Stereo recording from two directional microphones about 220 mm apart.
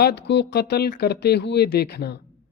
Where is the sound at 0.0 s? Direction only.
50° left (ahead or behind).